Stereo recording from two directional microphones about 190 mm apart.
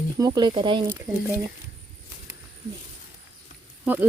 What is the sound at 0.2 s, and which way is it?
Speech, 20° right (ahead or behind).